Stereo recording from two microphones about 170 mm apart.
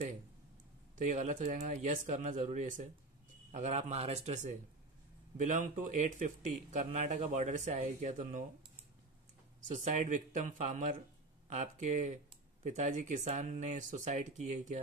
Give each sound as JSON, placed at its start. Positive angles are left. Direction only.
{"t": 0.9, "sound": "speech", "side_deg": -45}
{"t": 9.8, "sound": "speech", "side_deg": -50}